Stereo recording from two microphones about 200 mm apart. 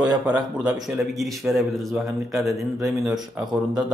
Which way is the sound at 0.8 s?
Centre (ahead or behind).